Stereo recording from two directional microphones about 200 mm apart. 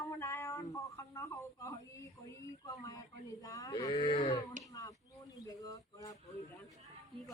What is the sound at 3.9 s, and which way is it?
Cattle, 35° left (ahead or behind).